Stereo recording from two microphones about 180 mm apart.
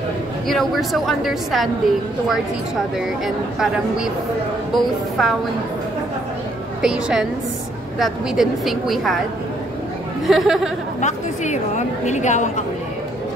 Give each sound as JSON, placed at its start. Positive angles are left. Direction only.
{"t": 0.5, "sound": "a woman's voice", "side_deg": 0}
{"t": 3.5, "sound": "a woman's voice", "side_deg": -5}
{"t": 6.8, "sound": "a woman's voice", "side_deg": -5}
{"t": 10.2, "sound": "a woman's voice", "side_deg": 0}
{"t": 11.0, "sound": "a woman's voice", "side_deg": 40}